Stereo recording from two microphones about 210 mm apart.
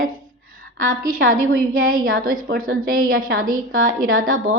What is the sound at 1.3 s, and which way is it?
A woman's voice, 40° right (ahead or behind).